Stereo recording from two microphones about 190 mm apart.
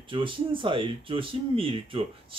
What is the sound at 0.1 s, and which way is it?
Speech, 25° right (ahead or behind).